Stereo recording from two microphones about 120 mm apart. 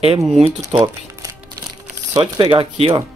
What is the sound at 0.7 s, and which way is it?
Speech, 45° right (ahead or behind).